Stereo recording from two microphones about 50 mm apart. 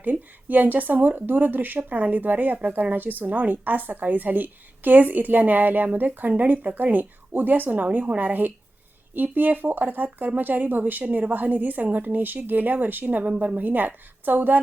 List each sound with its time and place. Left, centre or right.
0.0 s a woman's voice: right